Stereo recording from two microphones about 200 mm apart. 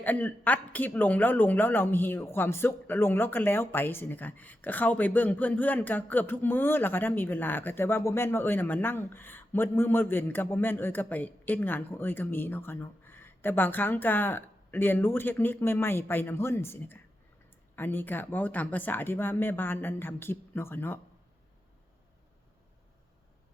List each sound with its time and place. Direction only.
0.0 s a man's voice: 10° left (ahead or behind)